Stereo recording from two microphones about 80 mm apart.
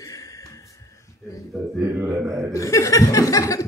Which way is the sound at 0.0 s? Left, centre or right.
Left.